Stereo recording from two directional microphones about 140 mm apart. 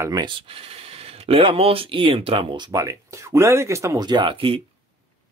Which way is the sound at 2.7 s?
25° right (ahead or behind).